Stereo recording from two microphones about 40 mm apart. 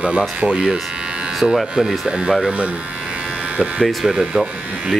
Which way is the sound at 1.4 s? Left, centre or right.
Centre.